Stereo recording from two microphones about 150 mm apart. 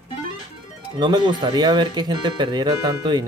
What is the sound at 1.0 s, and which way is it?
Speech, 30° right (ahead or behind).